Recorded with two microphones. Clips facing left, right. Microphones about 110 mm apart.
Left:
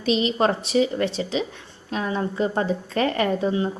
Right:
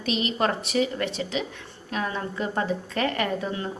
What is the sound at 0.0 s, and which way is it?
A woman's voice, 30° left (ahead or behind).